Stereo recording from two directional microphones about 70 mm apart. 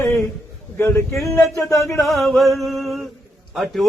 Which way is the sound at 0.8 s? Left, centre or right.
Left.